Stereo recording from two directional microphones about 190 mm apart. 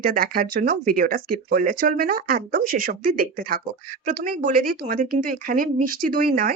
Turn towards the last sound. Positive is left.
turn(degrees=-50)  # may be behind; listen again after turning